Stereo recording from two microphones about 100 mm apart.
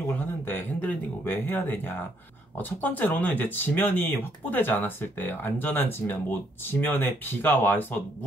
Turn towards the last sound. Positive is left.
turn(degrees=20)  # may be behind; listen again after turning